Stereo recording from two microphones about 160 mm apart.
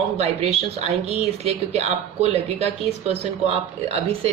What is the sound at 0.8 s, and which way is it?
Speech, 40° right (ahead or behind).